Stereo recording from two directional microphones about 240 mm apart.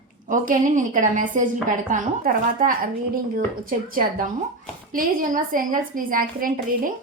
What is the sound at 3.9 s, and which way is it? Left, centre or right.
A woman's voice, right.